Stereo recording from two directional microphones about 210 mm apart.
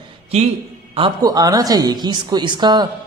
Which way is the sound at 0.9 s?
20° right (ahead or behind).